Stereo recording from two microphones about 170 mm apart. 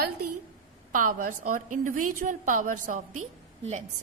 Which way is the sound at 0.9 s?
50° right (ahead or behind).